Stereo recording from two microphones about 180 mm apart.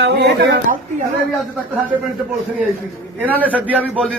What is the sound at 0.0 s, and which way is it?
Speech, 70° right (ahead or behind).